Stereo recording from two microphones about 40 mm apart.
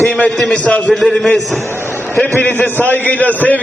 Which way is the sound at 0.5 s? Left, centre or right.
Left.